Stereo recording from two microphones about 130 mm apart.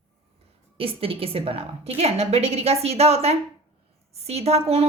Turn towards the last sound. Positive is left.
turn(degrees=-50)  # may be behind; listen again after turning